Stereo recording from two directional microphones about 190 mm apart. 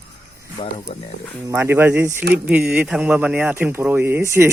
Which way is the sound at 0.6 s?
30° left (ahead or behind).